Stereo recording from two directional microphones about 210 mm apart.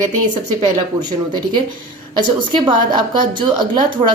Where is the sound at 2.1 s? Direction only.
25° right (ahead or behind).